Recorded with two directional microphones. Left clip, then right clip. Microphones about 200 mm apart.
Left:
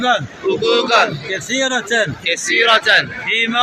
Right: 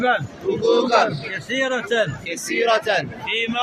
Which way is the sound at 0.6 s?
Centre (ahead or behind).